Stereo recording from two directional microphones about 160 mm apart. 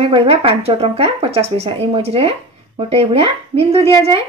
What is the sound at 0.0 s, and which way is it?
A woman's voice, 35° right (ahead or behind).